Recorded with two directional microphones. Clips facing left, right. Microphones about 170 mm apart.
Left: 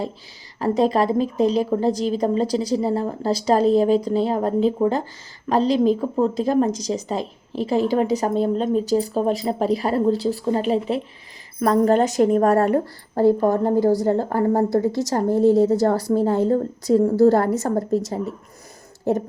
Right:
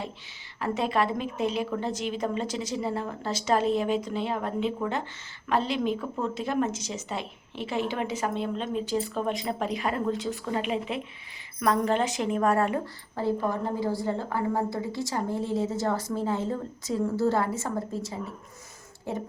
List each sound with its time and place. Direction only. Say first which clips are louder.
0.6 s a woman's voice: left 8 dB; 35° left (ahead or behind)